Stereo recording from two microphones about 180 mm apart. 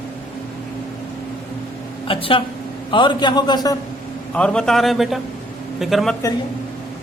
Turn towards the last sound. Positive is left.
turn(degrees=0)  # may be behind; listen again after turning